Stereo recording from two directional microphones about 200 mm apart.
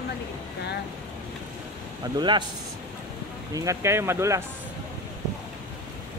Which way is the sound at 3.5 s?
15° right (ahead or behind).